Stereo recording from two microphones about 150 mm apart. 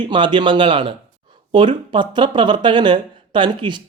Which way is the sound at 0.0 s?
35° right (ahead or behind).